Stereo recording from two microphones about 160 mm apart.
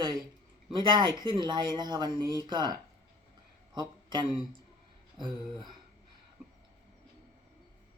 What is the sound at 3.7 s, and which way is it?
Speech, 30° right (ahead or behind).